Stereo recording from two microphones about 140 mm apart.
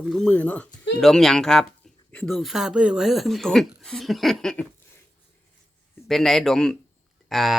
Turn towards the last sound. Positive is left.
turn(degrees=0)  # may be behind; listen again after turning